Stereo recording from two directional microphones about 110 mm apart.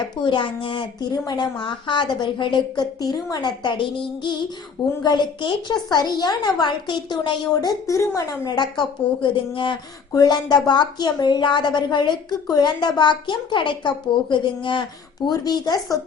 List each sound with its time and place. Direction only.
0.3 s a woman's voice: 50° left (ahead or behind)
10.1 s a woman's voice: 35° left (ahead or behind)
15.3 s a woman's voice: 40° left (ahead or behind)